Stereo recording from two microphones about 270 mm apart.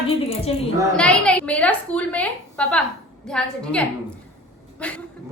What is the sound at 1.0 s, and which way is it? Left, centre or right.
A woman's voice, centre.